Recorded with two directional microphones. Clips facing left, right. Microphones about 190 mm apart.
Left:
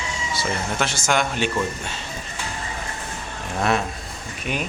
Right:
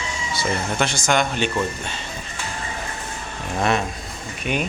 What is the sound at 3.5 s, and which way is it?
Speech, centre (ahead or behind).